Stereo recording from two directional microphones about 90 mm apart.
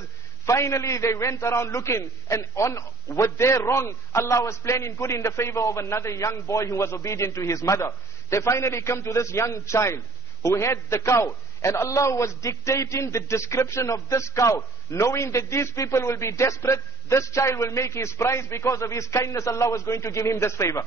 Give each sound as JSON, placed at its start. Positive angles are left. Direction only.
{"t": 0.5, "sound": "a man's voice", "side_deg": 35}